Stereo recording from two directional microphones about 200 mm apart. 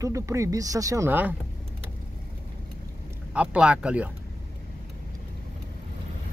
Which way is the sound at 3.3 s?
5° right (ahead or behind).